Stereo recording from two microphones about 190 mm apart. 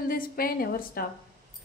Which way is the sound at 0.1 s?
50° left (ahead or behind).